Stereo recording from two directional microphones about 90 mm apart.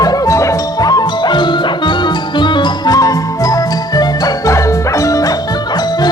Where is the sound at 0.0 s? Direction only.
45° left (ahead or behind).